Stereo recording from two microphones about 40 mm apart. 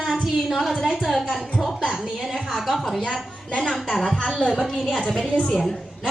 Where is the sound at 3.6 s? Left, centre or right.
Centre.